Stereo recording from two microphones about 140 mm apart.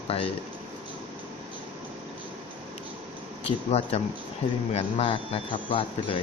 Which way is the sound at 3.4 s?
50° left (ahead or behind).